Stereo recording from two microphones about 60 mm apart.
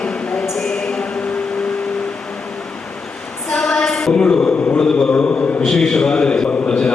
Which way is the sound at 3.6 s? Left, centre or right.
Centre.